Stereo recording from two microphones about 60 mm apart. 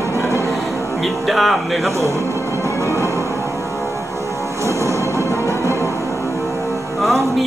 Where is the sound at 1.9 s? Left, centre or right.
Right.